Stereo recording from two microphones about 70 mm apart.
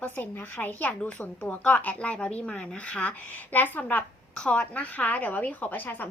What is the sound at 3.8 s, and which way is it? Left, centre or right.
A woman's voice, centre.